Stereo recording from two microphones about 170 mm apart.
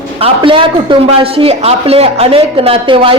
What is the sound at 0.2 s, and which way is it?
A man's voice, 30° right (ahead or behind).